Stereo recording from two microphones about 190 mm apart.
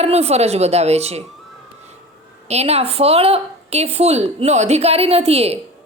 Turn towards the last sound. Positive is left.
turn(degrees=-30)  # may be behind; listen again after turning